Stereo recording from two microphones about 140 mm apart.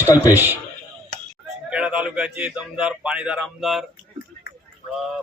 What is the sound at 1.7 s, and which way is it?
A man's voice, 5° right (ahead or behind).